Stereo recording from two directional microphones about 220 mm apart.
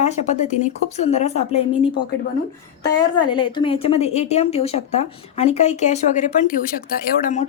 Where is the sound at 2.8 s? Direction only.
20° left (ahead or behind).